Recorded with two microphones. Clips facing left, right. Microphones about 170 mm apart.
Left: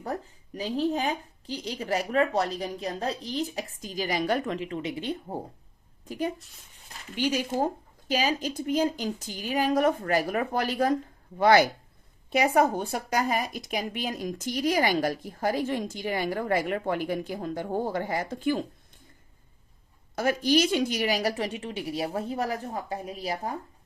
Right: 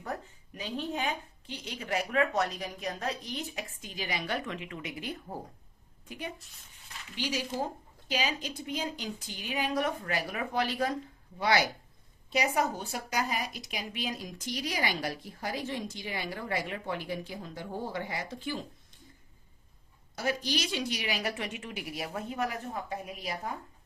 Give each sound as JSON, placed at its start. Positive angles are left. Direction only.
{"t": 0.0, "sound": "a woman's voice", "side_deg": 35}
{"t": 6.1, "sound": "a woman's voice", "side_deg": 40}
{"t": 7.2, "sound": "speech", "side_deg": 50}
{"t": 20.1, "sound": "a woman's voice", "side_deg": 50}